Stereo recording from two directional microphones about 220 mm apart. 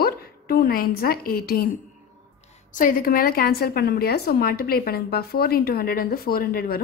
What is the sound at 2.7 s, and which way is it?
A woman's voice, 35° left (ahead or behind).